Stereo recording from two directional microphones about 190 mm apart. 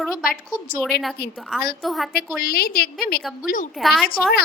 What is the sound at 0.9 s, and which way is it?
Speech, 55° left (ahead or behind).